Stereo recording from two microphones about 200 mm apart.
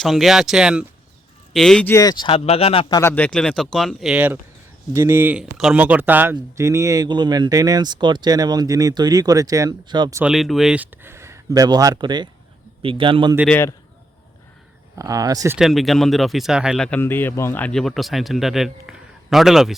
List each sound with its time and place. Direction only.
0.0 s a man's voice: centre (ahead or behind); by 3.0 s 30° left (ahead or behind)
3.0 s speech: 10° left (ahead or behind); by 10.2 s 20° right (ahead or behind)
10.2 s speech: centre (ahead or behind); by 13.3 s 25° right (ahead or behind)
13.5 s a man's voice: 10° left (ahead or behind)
14.9 s speech: 15° right (ahead or behind)
15.5 s speech: centre (ahead or behind)